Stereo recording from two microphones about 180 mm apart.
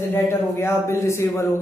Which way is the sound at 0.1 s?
15° left (ahead or behind).